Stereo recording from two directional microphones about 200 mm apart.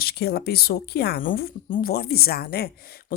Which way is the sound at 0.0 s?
50° left (ahead or behind).